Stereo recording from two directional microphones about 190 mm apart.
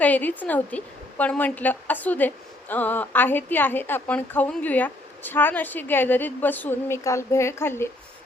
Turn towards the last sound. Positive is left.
turn(degrees=15)  # may be behind; listen again after turning